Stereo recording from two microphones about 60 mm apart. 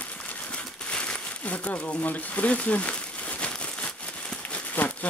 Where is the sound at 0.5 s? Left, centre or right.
Left.